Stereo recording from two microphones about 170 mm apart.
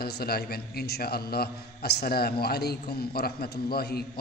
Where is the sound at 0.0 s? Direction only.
65° left (ahead or behind).